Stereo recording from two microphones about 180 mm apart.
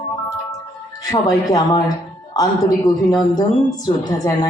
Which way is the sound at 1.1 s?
20° left (ahead or behind).